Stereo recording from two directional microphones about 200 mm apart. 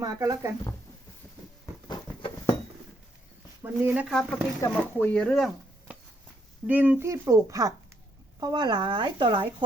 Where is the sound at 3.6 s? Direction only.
10° right (ahead or behind).